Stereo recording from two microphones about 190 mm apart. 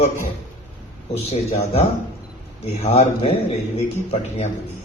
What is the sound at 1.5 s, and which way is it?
A man's voice, 35° left (ahead or behind).